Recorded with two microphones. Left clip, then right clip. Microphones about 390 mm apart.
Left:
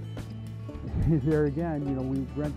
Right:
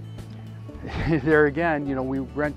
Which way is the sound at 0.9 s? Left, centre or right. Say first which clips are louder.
Right 8 dB; centre.